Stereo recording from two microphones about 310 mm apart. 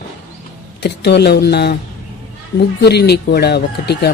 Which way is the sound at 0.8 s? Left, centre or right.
Left.